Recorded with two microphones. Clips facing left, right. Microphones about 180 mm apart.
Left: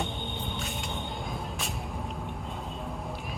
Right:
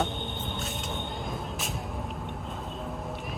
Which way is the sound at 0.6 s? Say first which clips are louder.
Right 1 dB; centre (ahead or behind).